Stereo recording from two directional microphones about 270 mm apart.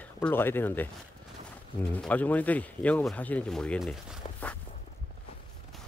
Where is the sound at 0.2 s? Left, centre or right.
Centre.